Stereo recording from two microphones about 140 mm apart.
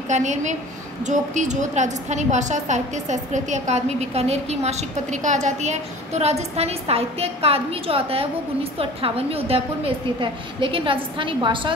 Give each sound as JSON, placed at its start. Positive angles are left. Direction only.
{"t": 0.1, "sound": "a woman's voice", "side_deg": -60}